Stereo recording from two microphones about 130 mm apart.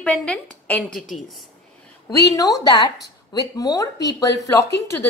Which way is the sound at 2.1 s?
25° left (ahead or behind).